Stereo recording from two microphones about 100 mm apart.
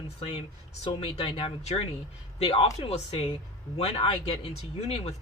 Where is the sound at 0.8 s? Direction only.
60° left (ahead or behind); by 1.9 s 90° left.